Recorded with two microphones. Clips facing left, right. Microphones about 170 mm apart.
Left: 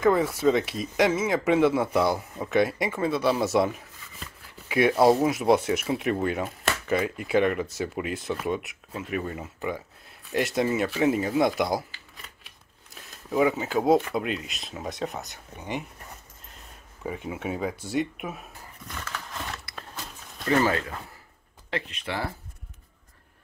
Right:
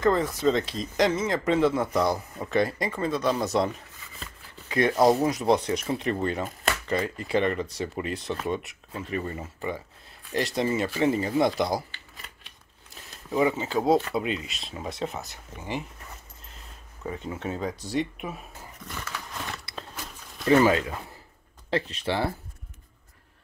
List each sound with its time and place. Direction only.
0.0 s speech: 5° left (ahead or behind)
17.0 s speech: 10° left (ahead or behind)
20.4 s speech: 15° right (ahead or behind)
21.6 s speech: 35° right (ahead or behind)